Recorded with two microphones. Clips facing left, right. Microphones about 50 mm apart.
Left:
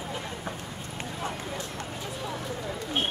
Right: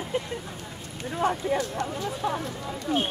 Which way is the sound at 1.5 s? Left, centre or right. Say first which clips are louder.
Right 8 dB; right.